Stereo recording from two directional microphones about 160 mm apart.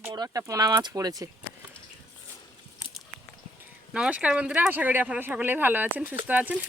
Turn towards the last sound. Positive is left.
turn(degrees=-10)  # may be behind; listen again after turning